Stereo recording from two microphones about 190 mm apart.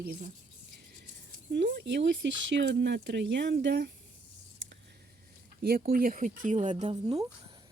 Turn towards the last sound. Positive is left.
turn(degrees=-30)  # may be behind; listen again after turning